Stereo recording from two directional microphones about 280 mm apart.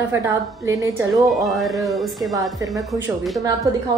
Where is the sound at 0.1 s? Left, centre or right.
Centre.